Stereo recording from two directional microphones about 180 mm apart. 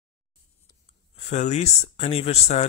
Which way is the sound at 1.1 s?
40° left (ahead or behind).